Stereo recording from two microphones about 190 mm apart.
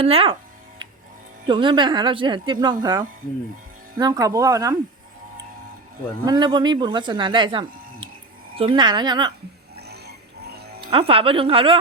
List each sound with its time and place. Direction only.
0.0 s speech: 30° right (ahead or behind)
1.5 s a woman's voice: 25° right (ahead or behind)
6.2 s a woman's voice: 20° right (ahead or behind)
9.7 s a sound: 60° right (ahead or behind)
10.8 s a woman's voice: 30° right (ahead or behind)